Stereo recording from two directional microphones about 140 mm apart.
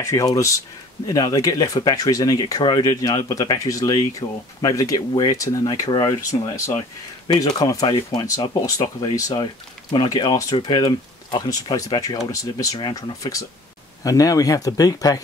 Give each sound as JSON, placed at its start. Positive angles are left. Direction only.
{"t": 0.0, "sound": "speech", "side_deg": 25}